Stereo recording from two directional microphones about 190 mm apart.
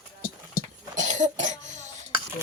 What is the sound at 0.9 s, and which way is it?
Cough, 40° right (ahead or behind).